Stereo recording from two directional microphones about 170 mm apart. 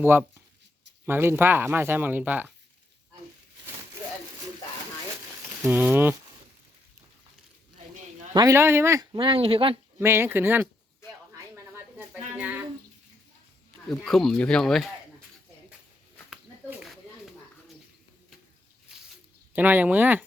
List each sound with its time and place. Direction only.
0.0 s speech: 10° right (ahead or behind)
5.6 s speech: 10° right (ahead or behind)
8.3 s speech: 20° right (ahead or behind)
9.1 s speech: 30° right (ahead or behind)
10.0 s speech: 15° right (ahead or behind)
11.3 s a sound: 15° right (ahead or behind)
13.9 s speech: centre (ahead or behind)
16.3 s a sound: 5° right (ahead or behind)
19.5 s speech: 10° right (ahead or behind)